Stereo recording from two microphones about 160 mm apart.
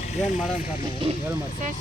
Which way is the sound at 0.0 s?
45° left (ahead or behind).